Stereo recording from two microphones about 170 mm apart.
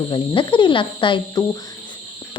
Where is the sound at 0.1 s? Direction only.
30° left (ahead or behind).